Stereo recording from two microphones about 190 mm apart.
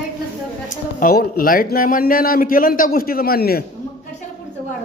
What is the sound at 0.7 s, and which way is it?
Speech, 50° left (ahead or behind).